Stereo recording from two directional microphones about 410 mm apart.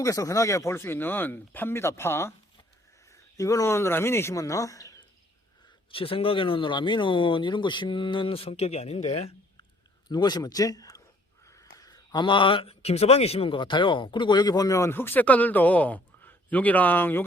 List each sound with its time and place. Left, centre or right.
0.0 s speech: centre